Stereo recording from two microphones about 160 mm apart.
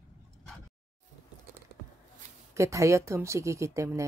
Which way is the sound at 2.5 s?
20° right (ahead or behind).